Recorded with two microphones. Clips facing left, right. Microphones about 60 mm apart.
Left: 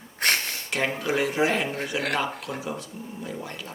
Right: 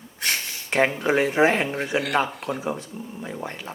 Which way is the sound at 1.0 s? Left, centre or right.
Right.